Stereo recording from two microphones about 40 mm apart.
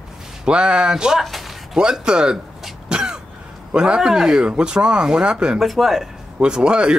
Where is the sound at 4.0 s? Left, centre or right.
Centre.